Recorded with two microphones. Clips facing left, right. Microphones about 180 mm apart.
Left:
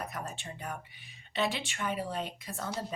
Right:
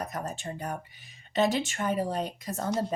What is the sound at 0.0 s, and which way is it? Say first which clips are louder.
Speech: right 5 dB; 40° right (ahead or behind).